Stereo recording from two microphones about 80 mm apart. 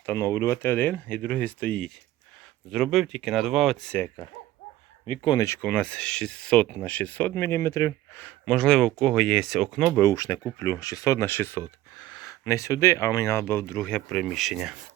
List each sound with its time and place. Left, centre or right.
0.0 s speech: left
2.7 s speech: centre
5.6 s speech: centre; by 8.2 s left
8.2 s speech: centre
10.0 s speech: left
11.9 s a sound: left
12.3 s speech: left
13.8 s speech: centre